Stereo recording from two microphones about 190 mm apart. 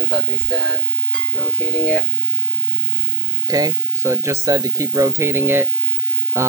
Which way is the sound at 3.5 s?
20° right (ahead or behind).